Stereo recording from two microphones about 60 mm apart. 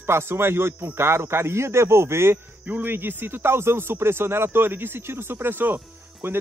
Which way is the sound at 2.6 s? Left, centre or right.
Right.